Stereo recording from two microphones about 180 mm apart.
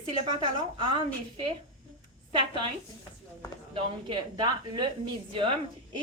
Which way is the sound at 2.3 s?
25° right (ahead or behind).